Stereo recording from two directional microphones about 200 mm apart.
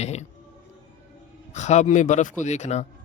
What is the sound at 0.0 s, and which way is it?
Speech, 35° left (ahead or behind).